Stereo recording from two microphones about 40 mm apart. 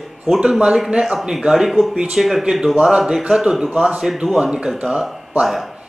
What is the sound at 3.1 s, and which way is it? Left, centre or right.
Speech, centre.